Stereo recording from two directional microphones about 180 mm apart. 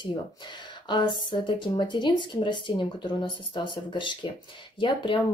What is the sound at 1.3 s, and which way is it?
Speech, 25° left (ahead or behind).